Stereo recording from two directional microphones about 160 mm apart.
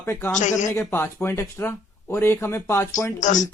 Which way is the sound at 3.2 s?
50° left (ahead or behind).